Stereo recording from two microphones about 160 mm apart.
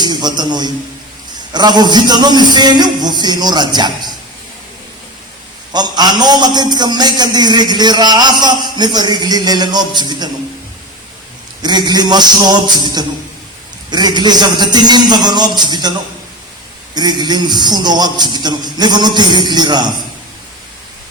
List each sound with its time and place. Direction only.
0.0 s a sound: 25° right (ahead or behind)
1.5 s a man's voice: 25° right (ahead or behind)
5.7 s a man's voice: 25° right (ahead or behind)
11.6 s a man's voice: 25° right (ahead or behind)